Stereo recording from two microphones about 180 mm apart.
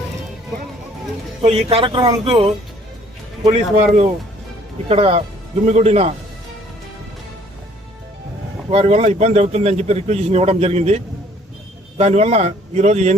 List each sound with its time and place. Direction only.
1.4 s speech: 35° right (ahead or behind)
3.8 s speech: 40° right (ahead or behind)
8.7 s speech: 35° right (ahead or behind)